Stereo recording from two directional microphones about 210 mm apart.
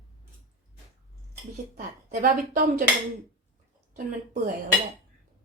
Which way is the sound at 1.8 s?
40° right (ahead or behind).